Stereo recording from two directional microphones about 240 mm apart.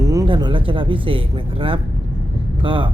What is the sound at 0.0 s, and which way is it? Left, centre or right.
Speech, centre.